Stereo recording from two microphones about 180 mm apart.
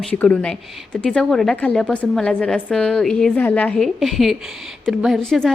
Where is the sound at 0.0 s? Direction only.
5° left (ahead or behind).